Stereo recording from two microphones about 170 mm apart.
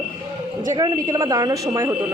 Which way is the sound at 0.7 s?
20° right (ahead or behind).